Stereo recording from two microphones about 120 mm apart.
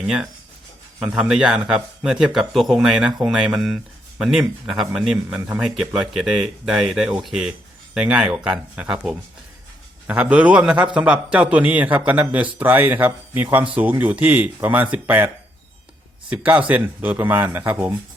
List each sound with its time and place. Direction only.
0.0 s speech: 5° right (ahead or behind)
16.3 s speech: 15° right (ahead or behind)